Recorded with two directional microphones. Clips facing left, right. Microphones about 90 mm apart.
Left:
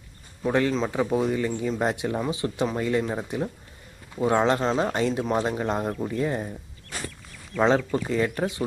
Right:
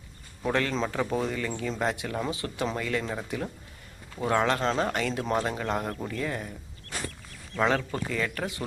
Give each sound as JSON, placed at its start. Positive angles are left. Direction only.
{"t": 0.4, "sound": "speech", "side_deg": 15}
{"t": 4.6, "sound": "speech", "side_deg": 10}
{"t": 4.9, "sound": "speech", "side_deg": 20}
{"t": 7.5, "sound": "speech", "side_deg": 20}